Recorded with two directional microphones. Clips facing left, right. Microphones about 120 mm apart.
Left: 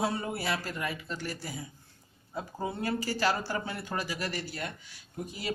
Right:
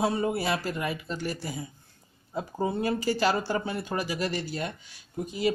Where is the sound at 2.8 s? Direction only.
20° right (ahead or behind).